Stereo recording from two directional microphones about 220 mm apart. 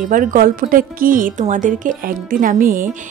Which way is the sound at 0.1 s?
35° right (ahead or behind).